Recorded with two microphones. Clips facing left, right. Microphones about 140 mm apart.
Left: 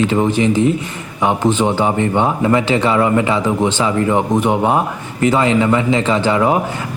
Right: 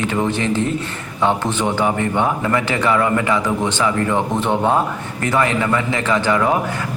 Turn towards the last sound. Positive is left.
turn(degrees=20)  # may be behind; listen again after turning